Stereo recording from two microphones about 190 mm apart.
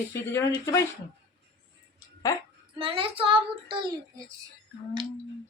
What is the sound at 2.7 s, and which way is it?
A child's voice, 30° right (ahead or behind).